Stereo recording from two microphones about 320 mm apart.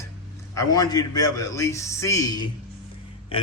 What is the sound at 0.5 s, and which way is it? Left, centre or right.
A man's voice, centre.